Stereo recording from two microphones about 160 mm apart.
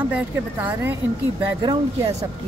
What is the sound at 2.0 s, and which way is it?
Speech, 20° right (ahead or behind).